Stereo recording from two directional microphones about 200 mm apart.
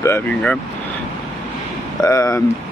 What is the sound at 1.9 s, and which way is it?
Speech, 15° left (ahead or behind).